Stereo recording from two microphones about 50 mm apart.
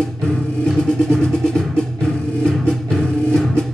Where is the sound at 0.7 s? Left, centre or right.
Centre.